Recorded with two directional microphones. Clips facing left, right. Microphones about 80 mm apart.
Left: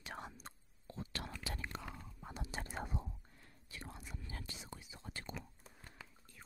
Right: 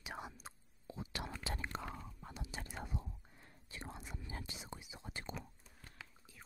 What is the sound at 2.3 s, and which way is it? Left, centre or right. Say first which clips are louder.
Whispering: left 4 dB; left.